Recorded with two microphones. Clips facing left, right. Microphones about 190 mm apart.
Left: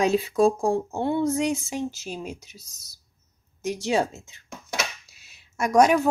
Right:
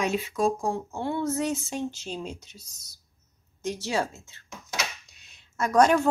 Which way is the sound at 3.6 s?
15° left (ahead or behind).